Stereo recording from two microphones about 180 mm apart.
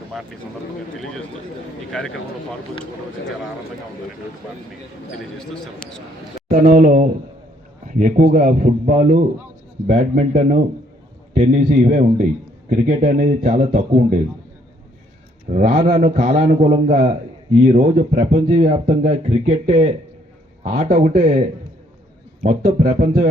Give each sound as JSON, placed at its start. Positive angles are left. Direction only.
{"t": 1.9, "sound": "speech", "side_deg": 5}
{"t": 5.4, "sound": "speech", "side_deg": 5}
{"t": 6.5, "sound": "a man's voice", "side_deg": -45}
{"t": 15.4, "sound": "a man's voice", "side_deg": -45}
{"t": 20.7, "sound": "a man's voice", "side_deg": -45}
{"t": 22.4, "sound": "a man's voice", "side_deg": -45}